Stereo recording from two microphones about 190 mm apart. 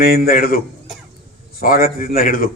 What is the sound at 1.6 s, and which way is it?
Speech, 50° left (ahead or behind).